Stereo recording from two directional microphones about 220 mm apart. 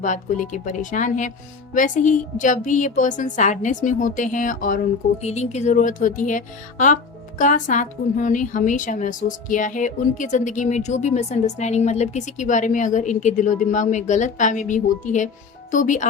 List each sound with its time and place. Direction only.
0.0 s speech: 35° left (ahead or behind)